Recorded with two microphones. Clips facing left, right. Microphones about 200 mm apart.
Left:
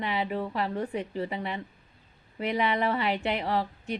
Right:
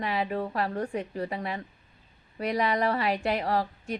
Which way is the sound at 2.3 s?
40° right (ahead or behind).